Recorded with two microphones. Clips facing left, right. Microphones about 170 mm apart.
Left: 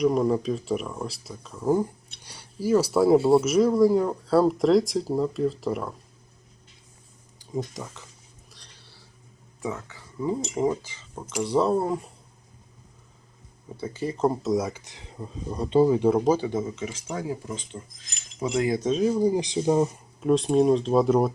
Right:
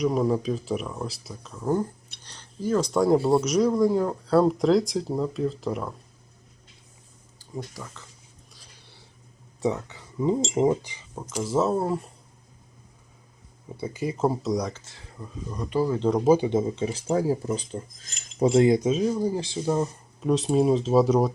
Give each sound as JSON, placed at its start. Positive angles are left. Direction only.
{"t": 0.0, "sound": "speech", "side_deg": 0}
{"t": 7.3, "sound": "speech", "side_deg": 20}
{"t": 9.6, "sound": "speech", "side_deg": -20}
{"t": 11.4, "sound": "speech", "side_deg": 0}
{"t": 13.8, "sound": "speech", "side_deg": -10}
{"t": 14.8, "sound": "speech", "side_deg": 15}
{"t": 16.0, "sound": "speech", "side_deg": 5}
{"t": 16.2, "sound": "speech", "side_deg": -10}
{"t": 16.5, "sound": "speech", "side_deg": -25}
{"t": 18.4, "sound": "speech", "side_deg": -25}
{"t": 18.8, "sound": "speech", "side_deg": -5}
{"t": 20.2, "sound": "speech", "side_deg": 0}